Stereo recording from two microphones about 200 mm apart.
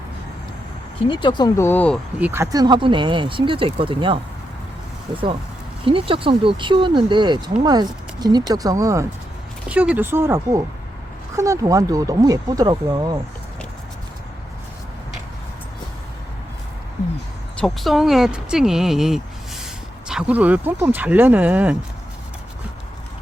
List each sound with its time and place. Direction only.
1.0 s speech: 25° left (ahead or behind); by 2.0 s 10° left (ahead or behind)
2.1 s speech: 10° right (ahead or behind); by 4.2 s 25° right (ahead or behind)
5.8 s speech: 25° right (ahead or behind)
17.6 s speech: centre (ahead or behind)
19.6 s a sound: 5° right (ahead or behind)
20.8 s speech: 10° right (ahead or behind)